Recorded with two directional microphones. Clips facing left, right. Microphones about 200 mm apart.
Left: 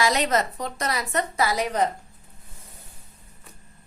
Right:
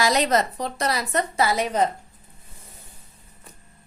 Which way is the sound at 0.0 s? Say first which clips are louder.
Right 2 dB; 35° right (ahead or behind).